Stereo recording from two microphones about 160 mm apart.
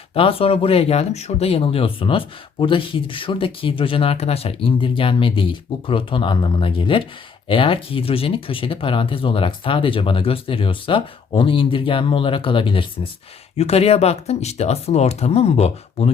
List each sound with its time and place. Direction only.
0.1 s speech: 35° left (ahead or behind)